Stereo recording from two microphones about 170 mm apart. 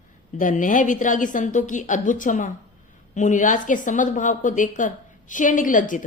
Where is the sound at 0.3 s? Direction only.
50° left (ahead or behind).